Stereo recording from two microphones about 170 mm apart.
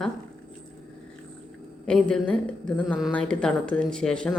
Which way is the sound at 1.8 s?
5° left (ahead or behind).